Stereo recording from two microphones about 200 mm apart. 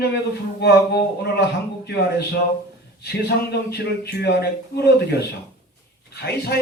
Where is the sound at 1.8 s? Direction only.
55° left (ahead or behind).